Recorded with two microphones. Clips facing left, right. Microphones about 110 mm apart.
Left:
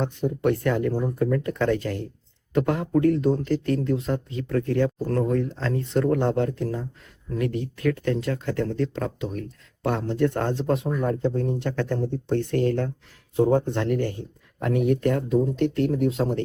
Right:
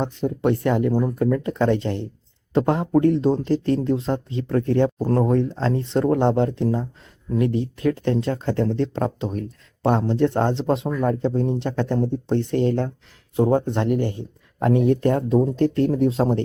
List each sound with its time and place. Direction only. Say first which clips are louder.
0.0 s speech: right 2 dB; 20° right (ahead or behind)